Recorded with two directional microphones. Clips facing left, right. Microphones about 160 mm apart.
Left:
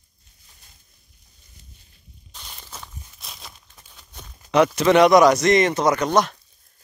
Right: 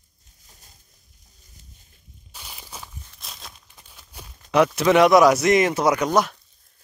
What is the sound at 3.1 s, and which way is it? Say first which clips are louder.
Tearing: even; centre (ahead or behind).